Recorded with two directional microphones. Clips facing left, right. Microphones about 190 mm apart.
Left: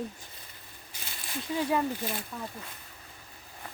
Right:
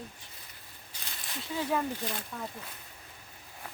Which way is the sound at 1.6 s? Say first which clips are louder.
Left 2 dB; 10° left (ahead or behind).